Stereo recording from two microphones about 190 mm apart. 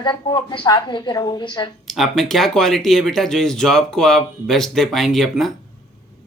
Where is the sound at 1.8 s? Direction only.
Centre (ahead or behind).